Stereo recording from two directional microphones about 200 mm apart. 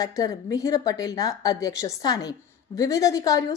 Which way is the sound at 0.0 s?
20° left (ahead or behind).